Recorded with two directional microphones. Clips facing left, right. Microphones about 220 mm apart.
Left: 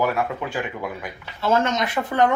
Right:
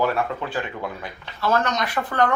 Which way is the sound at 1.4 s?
25° left (ahead or behind).